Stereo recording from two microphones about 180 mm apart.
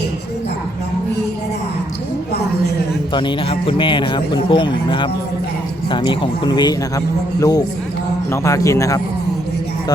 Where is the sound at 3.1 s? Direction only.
30° left (ahead or behind).